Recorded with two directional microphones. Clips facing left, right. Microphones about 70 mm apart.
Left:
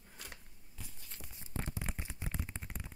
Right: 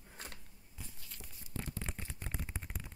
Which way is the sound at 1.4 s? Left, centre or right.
Left.